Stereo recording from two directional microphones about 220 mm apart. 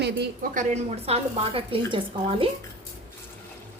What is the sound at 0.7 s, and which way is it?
A woman's voice, 30° right (ahead or behind).